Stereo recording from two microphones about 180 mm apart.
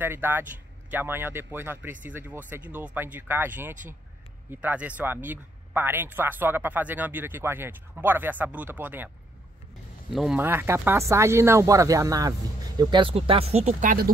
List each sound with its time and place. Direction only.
0.0 s speech: 10° right (ahead or behind)
10.1 s speech: centre (ahead or behind); by 14.1 s 50° right (ahead or behind)